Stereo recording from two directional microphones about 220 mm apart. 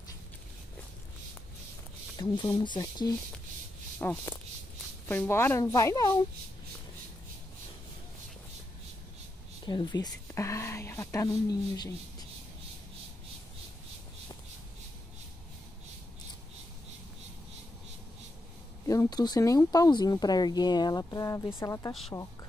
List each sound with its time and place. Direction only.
2.1 s speech: 20° left (ahead or behind)
9.7 s speech: 20° left (ahead or behind)
18.9 s speech: 15° left (ahead or behind)